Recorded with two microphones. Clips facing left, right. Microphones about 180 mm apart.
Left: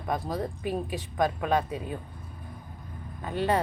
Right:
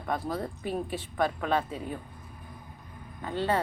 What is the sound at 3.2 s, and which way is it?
Speech, 20° left (ahead or behind).